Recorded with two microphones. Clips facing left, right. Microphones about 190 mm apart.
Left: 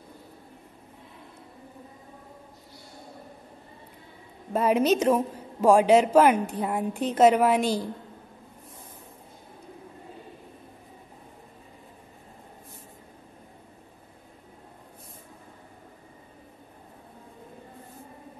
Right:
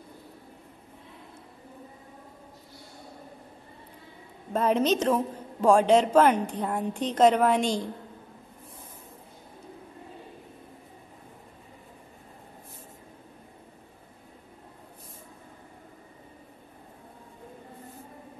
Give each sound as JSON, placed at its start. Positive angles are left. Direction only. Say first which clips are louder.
{"t": 4.5, "sound": "a woman's voice", "louder": "left 2 dB", "side_deg": 10}